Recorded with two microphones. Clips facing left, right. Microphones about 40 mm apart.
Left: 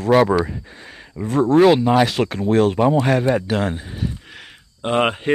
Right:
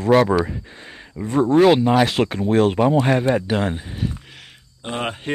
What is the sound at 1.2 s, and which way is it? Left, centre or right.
Speech, centre.